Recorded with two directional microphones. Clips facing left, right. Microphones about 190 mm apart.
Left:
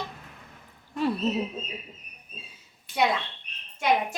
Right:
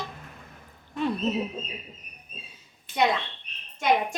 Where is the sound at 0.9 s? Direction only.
5° left (ahead or behind).